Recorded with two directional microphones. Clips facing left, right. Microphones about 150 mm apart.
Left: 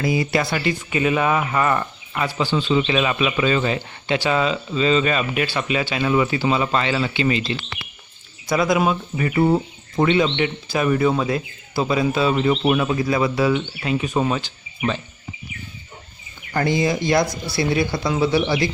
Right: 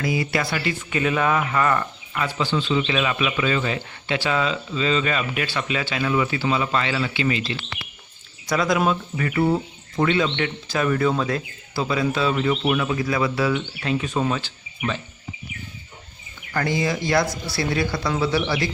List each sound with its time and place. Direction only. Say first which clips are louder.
0.0 s speech: left 3 dB; 25° left (ahead or behind)
2.6 s speech: left 3 dB; 25° left (ahead or behind)
8.4 s speech: left 2 dB; 10° left (ahead or behind)
12.3 s speech: left 3 dB; 25° left (ahead or behind)
16.5 s speech: left 3 dB; 20° left (ahead or behind)